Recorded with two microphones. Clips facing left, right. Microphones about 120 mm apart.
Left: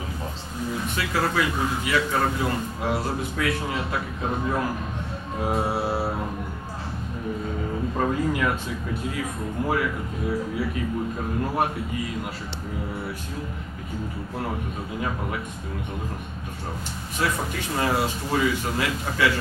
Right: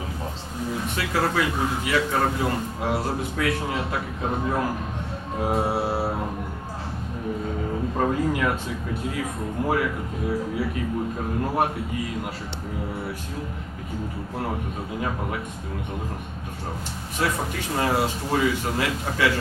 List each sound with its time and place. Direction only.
0.7 s speech: 40° right (ahead or behind)
4.3 s music: 35° right (ahead or behind)
7.4 s speech: 35° right (ahead or behind); by 12.3 s 50° right (ahead or behind)
14.4 s music: 40° right (ahead or behind)
17.2 s speech: 40° right (ahead or behind)